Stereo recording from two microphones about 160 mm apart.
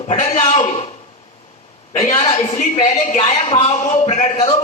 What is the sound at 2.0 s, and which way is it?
A man's voice, 45° left (ahead or behind).